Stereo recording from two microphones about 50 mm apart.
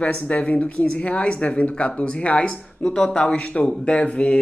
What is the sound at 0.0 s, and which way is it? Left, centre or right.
Speech, left.